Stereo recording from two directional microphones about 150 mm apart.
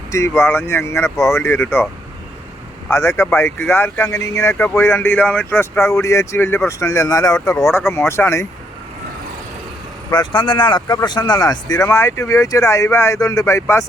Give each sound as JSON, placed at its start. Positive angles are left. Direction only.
{"t": 0.1, "sound": "speech", "side_deg": 20}
{"t": 2.9, "sound": "speech", "side_deg": 20}
{"t": 10.1, "sound": "speech", "side_deg": 30}